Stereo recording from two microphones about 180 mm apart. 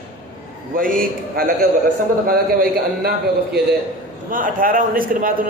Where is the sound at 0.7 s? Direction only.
50° right (ahead or behind).